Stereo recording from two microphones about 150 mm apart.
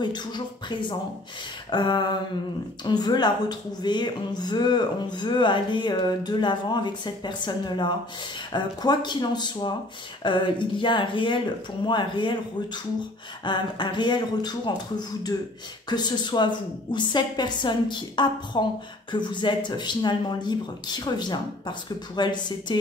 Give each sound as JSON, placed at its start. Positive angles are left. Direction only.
{"t": 0.7, "sound": "a woman's voice", "side_deg": 30}
{"t": 13.5, "sound": "a woman's voice", "side_deg": 30}
{"t": 15.9, "sound": "a woman's voice", "side_deg": 30}